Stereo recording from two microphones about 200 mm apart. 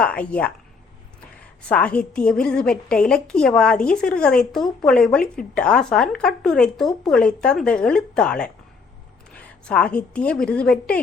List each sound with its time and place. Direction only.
0.0 s speech: 5° left (ahead or behind)
1.6 s a woman's voice: 5° left (ahead or behind)